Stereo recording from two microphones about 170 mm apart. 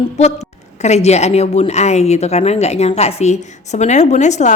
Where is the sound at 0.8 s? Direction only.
40° left (ahead or behind).